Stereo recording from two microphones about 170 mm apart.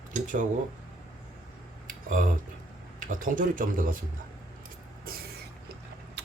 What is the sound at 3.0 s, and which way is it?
Speech, 50° right (ahead or behind).